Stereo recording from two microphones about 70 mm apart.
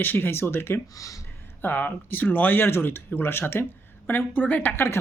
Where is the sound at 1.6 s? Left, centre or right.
Left.